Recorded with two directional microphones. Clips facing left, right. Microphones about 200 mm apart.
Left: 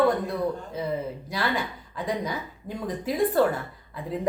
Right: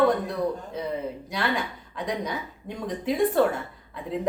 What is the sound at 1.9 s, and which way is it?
A woman's voice, 5° left (ahead or behind).